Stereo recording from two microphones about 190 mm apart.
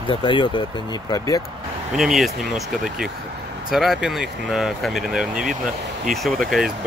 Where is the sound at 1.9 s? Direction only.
Centre (ahead or behind).